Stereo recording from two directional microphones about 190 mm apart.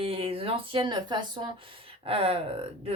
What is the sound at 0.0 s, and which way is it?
A woman's voice, 30° right (ahead or behind).